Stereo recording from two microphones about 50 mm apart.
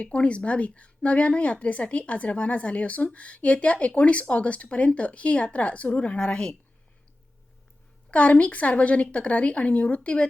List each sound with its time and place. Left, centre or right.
0.0 s a woman's voice: left
8.1 s a woman's voice: left